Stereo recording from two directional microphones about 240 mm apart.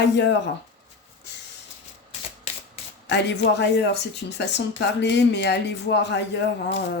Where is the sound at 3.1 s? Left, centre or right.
Left.